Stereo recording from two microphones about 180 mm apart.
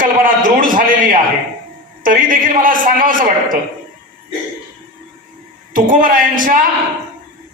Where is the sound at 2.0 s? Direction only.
50° right (ahead or behind).